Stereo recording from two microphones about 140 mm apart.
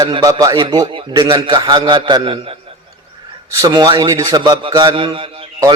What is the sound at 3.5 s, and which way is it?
A man's voice, 25° right (ahead or behind).